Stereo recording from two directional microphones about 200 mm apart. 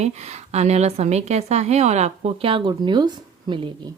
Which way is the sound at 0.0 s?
35° right (ahead or behind).